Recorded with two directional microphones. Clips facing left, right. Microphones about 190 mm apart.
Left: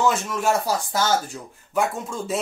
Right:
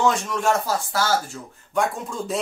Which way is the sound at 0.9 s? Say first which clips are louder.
Even; 20° left (ahead or behind).